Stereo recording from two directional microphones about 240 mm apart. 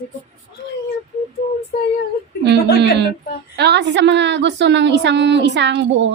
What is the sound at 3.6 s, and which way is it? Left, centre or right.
A woman's voice, right.